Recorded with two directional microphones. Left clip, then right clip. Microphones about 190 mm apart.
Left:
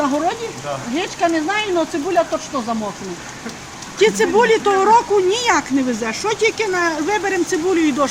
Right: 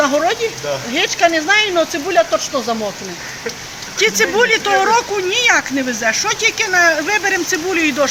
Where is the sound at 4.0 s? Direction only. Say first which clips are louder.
Even; 10° left (ahead or behind).